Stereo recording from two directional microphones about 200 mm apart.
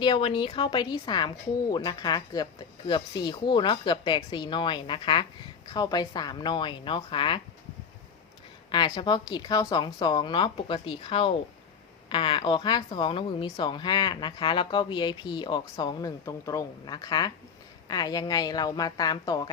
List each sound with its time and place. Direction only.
0.0 s speech: 25° left (ahead or behind)
8.7 s speech: 20° left (ahead or behind)